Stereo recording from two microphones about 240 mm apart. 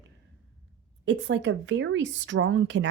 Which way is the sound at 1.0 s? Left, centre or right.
Right.